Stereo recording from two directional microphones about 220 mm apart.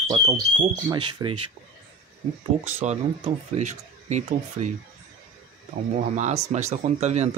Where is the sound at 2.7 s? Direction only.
30° right (ahead or behind).